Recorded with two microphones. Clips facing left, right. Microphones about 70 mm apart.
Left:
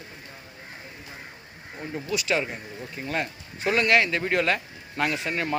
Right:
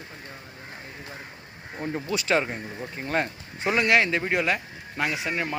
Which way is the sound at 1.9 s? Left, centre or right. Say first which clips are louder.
Right 2 dB; right.